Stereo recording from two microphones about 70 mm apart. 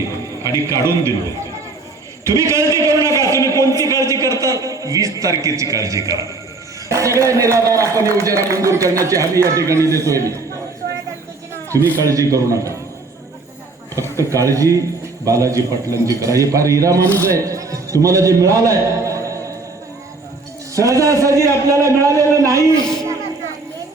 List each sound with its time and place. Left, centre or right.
0.4 s a man's voice: right
2.3 s a man's voice: right
3.7 s a man's voice: left
3.9 s a man's voice: right
11.9 s a man's voice: right
13.9 s a man's voice: right
20.7 s a man's voice: right